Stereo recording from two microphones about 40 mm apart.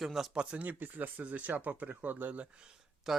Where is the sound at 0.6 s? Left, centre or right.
Right.